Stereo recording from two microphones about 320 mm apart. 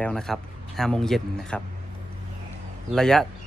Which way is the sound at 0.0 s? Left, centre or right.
Centre.